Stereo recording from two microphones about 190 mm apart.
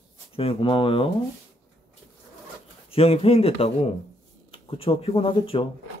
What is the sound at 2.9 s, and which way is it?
Speech, 30° left (ahead or behind).